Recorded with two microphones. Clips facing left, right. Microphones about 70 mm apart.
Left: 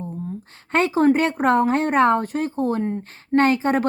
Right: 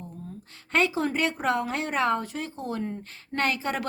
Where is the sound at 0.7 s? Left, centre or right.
Left.